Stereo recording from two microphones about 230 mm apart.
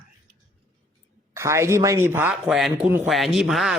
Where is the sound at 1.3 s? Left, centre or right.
Centre.